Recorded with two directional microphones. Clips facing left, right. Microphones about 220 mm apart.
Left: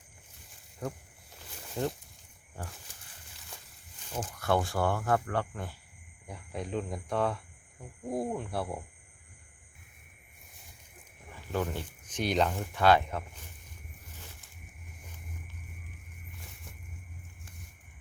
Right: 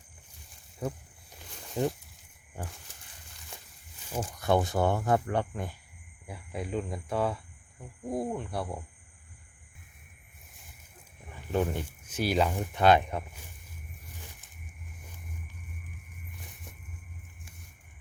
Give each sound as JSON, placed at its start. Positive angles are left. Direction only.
{"t": 0.8, "sound": "speech", "side_deg": -10}
{"t": 4.1, "sound": "speech", "side_deg": -10}
{"t": 6.2, "sound": "speech", "side_deg": -5}
{"t": 11.5, "sound": "speech", "side_deg": -15}
{"t": 12.7, "sound": "speech", "side_deg": -20}